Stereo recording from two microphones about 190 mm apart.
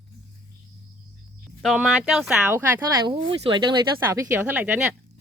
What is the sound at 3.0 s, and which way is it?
Speech, 25° right (ahead or behind).